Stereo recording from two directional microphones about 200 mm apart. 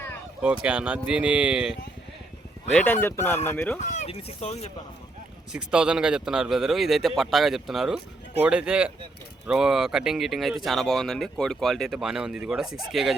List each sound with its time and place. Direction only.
0.6 s speech: 5° right (ahead or behind)
2.7 s speech: 10° left (ahead or behind)
3.9 s speech: 30° left (ahead or behind)
5.5 s speech: 5° right (ahead or behind)